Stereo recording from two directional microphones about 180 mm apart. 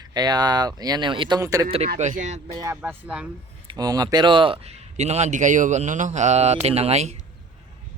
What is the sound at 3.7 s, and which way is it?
A man's voice, 20° right (ahead or behind).